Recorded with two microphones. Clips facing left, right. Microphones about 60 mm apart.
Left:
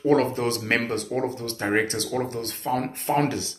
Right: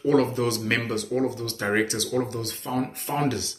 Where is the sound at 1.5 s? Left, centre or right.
Left.